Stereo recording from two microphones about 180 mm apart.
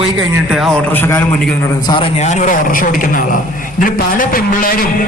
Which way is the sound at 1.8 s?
25° left (ahead or behind).